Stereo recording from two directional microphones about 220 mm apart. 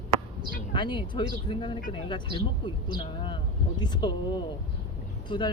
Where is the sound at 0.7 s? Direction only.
20° left (ahead or behind).